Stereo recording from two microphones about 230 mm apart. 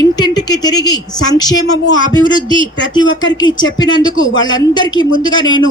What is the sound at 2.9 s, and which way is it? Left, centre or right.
A woman's voice, centre.